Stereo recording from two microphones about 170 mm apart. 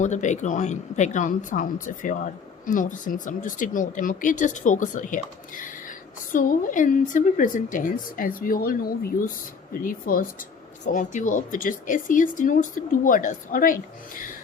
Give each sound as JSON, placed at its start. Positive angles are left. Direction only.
{"t": 0.0, "sound": "speech", "side_deg": 45}